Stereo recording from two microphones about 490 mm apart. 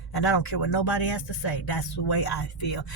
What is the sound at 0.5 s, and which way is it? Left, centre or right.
Speech, left.